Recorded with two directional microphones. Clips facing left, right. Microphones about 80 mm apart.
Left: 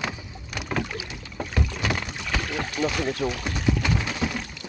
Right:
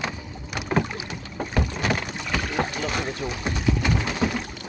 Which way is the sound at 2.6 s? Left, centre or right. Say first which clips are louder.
Left 3 dB; right.